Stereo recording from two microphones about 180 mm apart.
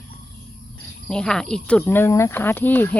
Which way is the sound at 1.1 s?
5° left (ahead or behind).